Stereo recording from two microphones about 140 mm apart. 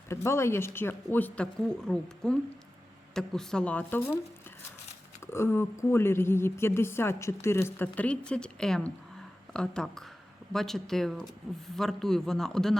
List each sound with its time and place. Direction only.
0.1 s a woman's voice: 20° left (ahead or behind)
5.2 s a woman's voice: 20° left (ahead or behind); by 12.7 s 5° left (ahead or behind)